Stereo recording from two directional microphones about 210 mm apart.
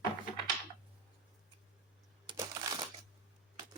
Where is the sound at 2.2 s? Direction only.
20° right (ahead or behind).